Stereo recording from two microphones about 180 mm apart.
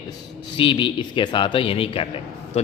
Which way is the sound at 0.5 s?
30° left (ahead or behind).